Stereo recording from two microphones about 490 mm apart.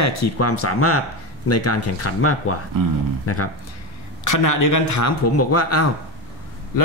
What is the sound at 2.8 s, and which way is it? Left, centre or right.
Speech, right.